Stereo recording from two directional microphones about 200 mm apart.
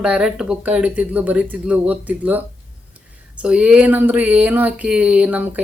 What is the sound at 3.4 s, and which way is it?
A woman's voice, 5° right (ahead or behind).